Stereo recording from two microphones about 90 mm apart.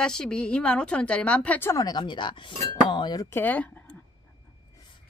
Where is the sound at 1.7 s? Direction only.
50° left (ahead or behind).